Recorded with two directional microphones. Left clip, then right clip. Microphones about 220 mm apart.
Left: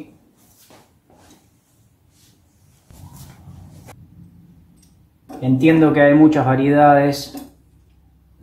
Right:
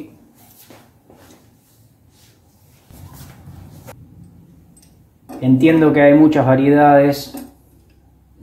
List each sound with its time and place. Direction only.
5.4 s speech: 25° right (ahead or behind)